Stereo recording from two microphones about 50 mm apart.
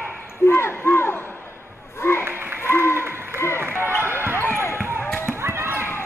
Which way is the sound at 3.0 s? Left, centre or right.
Right.